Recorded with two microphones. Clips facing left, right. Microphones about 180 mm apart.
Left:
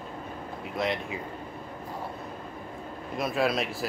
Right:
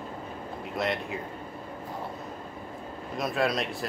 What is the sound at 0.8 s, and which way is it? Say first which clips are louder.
Speech: even; centre (ahead or behind).